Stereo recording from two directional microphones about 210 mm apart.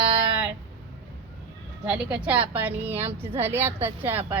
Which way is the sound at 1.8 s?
5° right (ahead or behind).